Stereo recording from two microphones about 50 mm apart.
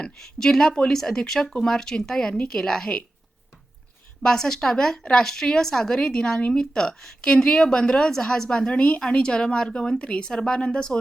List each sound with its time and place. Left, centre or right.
0.0 s a woman's voice: centre
4.2 s a woman's voice: centre